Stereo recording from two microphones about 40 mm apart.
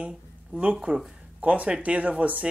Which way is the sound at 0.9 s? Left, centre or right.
Right.